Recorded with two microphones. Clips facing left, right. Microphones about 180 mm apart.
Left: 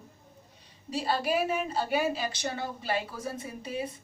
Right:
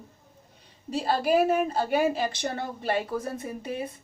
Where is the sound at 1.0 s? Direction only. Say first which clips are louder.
Right 5 dB; 50° right (ahead or behind).